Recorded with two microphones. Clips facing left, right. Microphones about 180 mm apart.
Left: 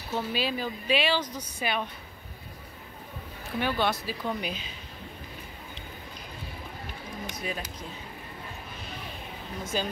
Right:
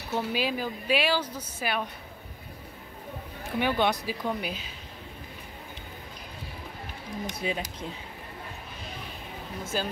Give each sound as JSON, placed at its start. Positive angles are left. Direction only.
{"t": 0.1, "sound": "speech", "side_deg": -10}
{"t": 3.5, "sound": "speech", "side_deg": -15}
{"t": 7.3, "sound": "speech", "side_deg": -25}
{"t": 9.7, "sound": "speech", "side_deg": -5}